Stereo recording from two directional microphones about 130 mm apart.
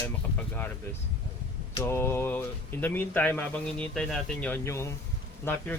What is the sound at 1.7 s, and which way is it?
Speech, 20° left (ahead or behind).